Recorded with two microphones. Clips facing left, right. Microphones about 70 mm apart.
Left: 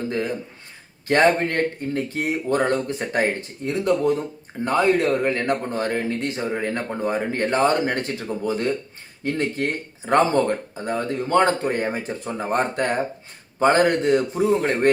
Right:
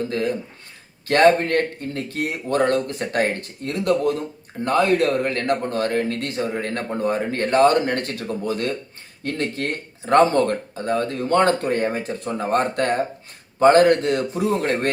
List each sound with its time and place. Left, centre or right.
1.0 s speech: centre